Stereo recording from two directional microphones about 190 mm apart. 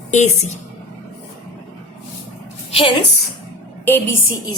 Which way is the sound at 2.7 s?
25° left (ahead or behind).